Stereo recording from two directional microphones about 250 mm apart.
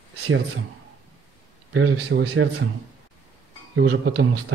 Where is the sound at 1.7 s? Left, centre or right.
Right.